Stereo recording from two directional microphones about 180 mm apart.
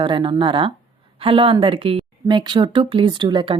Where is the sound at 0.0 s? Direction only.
25° right (ahead or behind).